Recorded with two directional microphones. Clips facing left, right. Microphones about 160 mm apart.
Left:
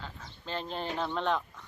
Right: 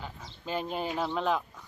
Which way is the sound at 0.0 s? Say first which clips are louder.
Right 3 dB; 10° right (ahead or behind).